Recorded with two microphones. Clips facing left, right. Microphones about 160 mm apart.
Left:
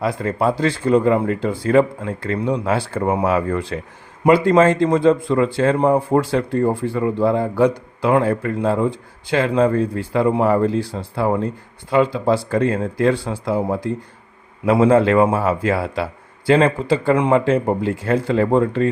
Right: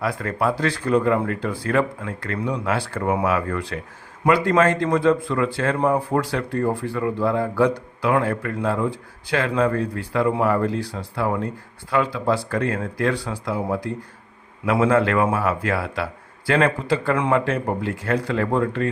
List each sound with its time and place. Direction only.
0.0 s speech: 25° left (ahead or behind)